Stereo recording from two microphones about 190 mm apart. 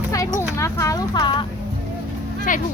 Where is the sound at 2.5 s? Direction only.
45° left (ahead or behind).